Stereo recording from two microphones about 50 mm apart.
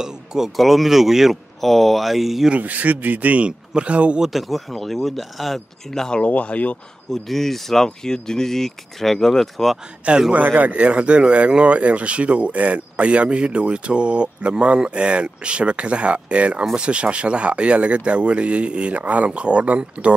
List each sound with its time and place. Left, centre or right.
0.0 s speech: centre
0.6 s speech: centre
2.5 s speech: right
4.2 s speech: centre
6.1 s speech: left
7.1 s speech: centre
10.3 s speech: right